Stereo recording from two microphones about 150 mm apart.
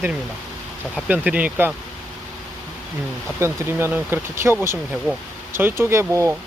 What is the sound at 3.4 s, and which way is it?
Speech, 15° right (ahead or behind).